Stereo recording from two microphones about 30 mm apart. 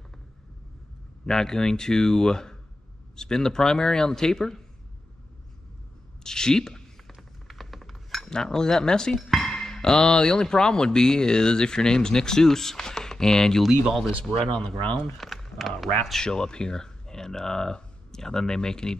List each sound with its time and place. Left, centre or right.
1.2 s speech: centre
6.2 s a woman's voice: left
7.2 s cutlery: centre
8.3 s speech: left
15.5 s speech: centre
16.2 s speech: left